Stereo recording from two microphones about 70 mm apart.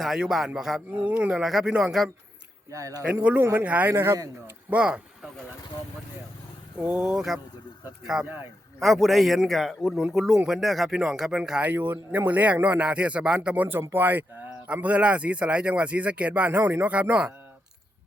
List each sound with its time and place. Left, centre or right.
0.2 s speech: centre
0.9 s speech: right
2.6 s speech: right
3.1 s speech: right
3.4 s speech: right
4.7 s speech: centre
6.7 s speech: centre
11.7 s speech: right